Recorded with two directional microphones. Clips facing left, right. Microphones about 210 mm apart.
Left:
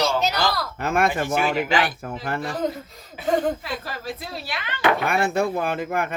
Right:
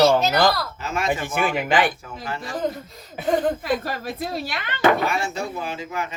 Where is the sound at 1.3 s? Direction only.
55° right (ahead or behind).